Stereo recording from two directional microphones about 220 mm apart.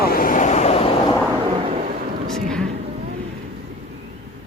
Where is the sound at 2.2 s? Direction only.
5° left (ahead or behind).